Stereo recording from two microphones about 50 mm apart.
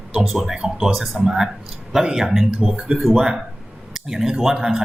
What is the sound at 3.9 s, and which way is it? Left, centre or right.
Speech, centre.